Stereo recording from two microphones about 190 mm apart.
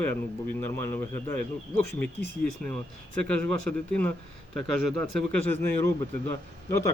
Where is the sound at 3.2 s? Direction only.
5° left (ahead or behind).